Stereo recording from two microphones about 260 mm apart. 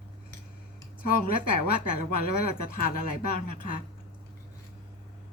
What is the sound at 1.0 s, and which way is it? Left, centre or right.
Speech, left.